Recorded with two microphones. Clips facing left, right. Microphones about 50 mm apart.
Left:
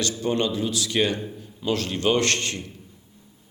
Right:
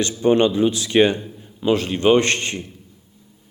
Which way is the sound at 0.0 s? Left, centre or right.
Right.